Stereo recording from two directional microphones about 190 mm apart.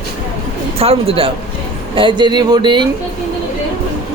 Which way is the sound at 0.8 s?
30° right (ahead or behind).